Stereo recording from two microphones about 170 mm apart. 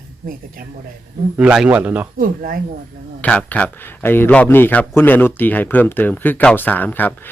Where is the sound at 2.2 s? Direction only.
55° right (ahead or behind).